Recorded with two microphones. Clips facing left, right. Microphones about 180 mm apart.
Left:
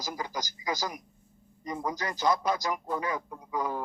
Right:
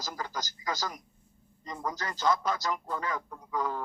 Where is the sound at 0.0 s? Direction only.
15° left (ahead or behind).